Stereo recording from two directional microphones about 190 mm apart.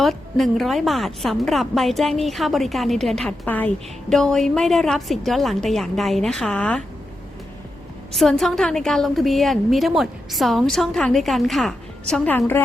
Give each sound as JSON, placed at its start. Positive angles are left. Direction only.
{"t": 0.0, "sound": "a woman's voice", "side_deg": 0}
{"t": 8.1, "sound": "a woman's voice", "side_deg": 0}